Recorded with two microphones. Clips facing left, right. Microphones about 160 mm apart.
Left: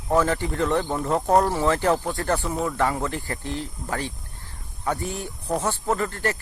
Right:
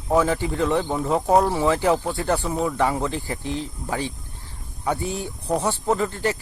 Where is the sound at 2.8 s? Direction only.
15° right (ahead or behind).